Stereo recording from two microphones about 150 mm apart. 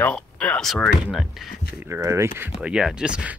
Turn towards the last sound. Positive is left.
turn(degrees=-5)  # may be behind; listen again after turning